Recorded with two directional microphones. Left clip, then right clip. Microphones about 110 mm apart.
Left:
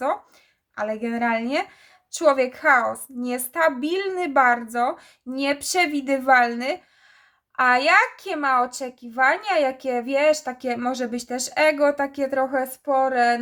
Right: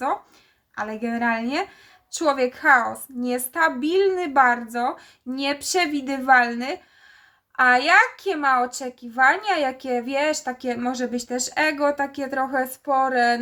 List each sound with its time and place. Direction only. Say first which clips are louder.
0.8 s a child's voice: left 1 dB; 40° left (ahead or behind)